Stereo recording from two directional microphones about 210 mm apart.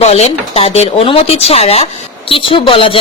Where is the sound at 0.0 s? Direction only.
30° left (ahead or behind).